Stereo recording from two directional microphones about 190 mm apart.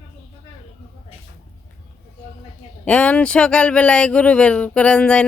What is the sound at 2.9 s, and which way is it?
Speech, 5° left (ahead or behind).